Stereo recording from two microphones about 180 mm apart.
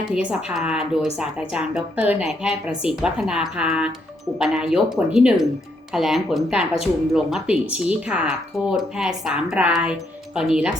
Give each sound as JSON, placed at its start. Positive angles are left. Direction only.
{"t": 0.1, "sound": "a woman's voice", "side_deg": -5}